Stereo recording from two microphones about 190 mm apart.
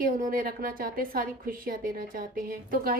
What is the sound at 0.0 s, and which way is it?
A woman's voice, 50° right (ahead or behind).